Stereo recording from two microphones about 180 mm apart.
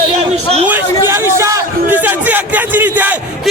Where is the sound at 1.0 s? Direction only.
15° right (ahead or behind).